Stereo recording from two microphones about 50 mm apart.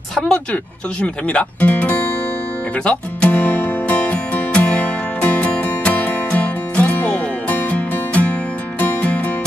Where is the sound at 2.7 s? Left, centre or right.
Left.